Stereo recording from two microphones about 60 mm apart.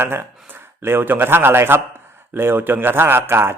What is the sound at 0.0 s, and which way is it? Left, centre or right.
A man's voice, right.